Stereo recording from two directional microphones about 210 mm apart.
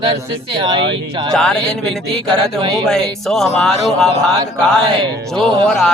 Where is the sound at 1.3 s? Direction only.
5° left (ahead or behind).